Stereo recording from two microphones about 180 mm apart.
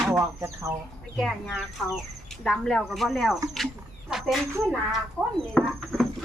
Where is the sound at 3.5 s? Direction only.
Centre (ahead or behind).